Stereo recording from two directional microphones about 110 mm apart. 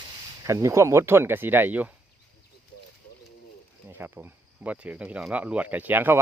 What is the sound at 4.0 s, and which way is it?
A man's voice, 15° right (ahead or behind).